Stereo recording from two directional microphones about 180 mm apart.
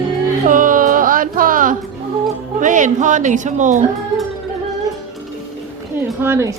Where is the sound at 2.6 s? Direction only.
45° right (ahead or behind).